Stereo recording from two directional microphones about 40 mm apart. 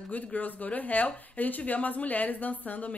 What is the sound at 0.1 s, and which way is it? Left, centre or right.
A woman's voice, left.